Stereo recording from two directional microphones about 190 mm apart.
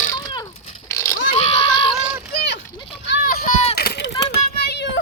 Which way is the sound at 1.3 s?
30° left (ahead or behind).